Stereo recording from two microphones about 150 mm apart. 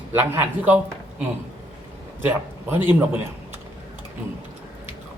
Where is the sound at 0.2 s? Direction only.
10° right (ahead or behind).